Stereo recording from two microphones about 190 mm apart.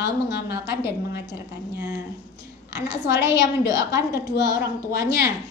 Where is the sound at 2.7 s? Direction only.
65° left (ahead or behind).